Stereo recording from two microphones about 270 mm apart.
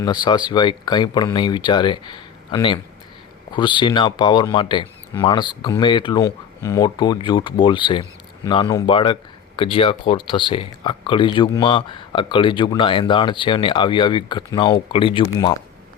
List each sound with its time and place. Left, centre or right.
0.0 s speech: centre